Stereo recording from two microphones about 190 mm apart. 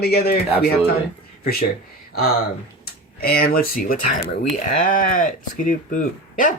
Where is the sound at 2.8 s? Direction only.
55° left (ahead or behind).